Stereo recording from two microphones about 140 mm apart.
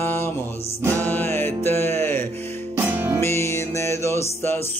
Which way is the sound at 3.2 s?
20° left (ahead or behind).